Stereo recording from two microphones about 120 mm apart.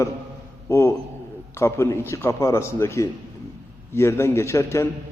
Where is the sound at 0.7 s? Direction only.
25° left (ahead or behind).